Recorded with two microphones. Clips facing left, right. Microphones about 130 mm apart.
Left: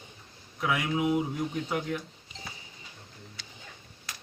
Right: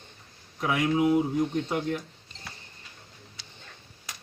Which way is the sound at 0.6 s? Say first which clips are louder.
Right 3 dB; 30° right (ahead or behind).